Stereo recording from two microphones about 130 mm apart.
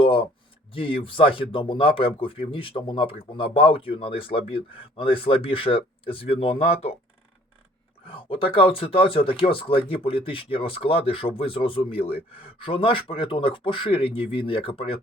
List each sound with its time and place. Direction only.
0.0 s speech: 45° left (ahead or behind)
8.0 s speech: 45° left (ahead or behind)